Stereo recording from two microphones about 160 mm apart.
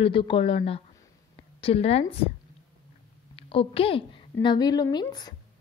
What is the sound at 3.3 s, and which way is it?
A woman's voice, 35° left (ahead or behind).